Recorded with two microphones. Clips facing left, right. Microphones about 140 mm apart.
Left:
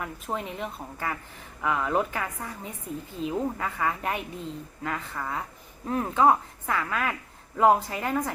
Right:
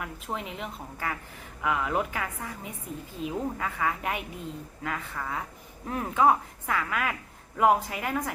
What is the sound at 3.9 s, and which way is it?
Speech, 30° left (ahead or behind).